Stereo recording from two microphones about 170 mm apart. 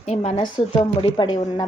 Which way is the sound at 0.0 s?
40° left (ahead or behind).